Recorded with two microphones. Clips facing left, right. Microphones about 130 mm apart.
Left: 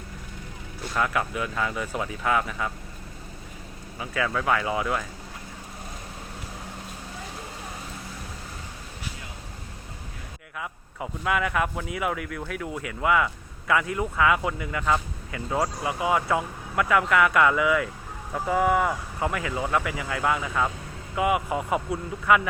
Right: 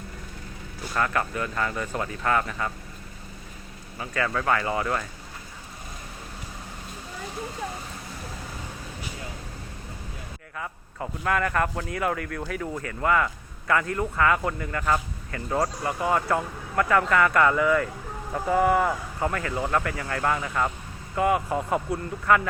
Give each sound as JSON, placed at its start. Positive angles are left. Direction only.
{"t": 0.9, "sound": "speech", "side_deg": 5}
{"t": 3.9, "sound": "speech", "side_deg": 5}
{"t": 10.6, "sound": "a man's voice", "side_deg": 5}